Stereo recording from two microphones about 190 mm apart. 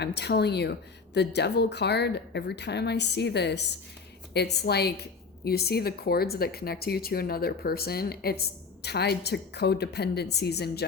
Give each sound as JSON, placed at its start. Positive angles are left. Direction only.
{"t": 0.0, "sound": "a woman's voice", "side_deg": 60}